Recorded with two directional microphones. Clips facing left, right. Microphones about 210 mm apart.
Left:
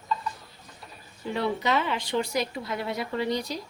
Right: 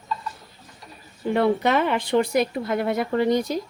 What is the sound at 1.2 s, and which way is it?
Speech, 55° right (ahead or behind).